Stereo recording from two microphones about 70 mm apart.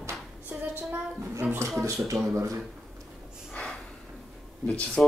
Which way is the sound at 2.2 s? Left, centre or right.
Right.